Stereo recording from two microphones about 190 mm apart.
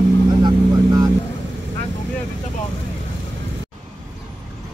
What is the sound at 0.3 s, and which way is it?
Vehicle, 20° right (ahead or behind).